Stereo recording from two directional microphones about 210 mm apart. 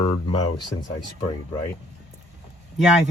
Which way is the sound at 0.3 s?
20° left (ahead or behind).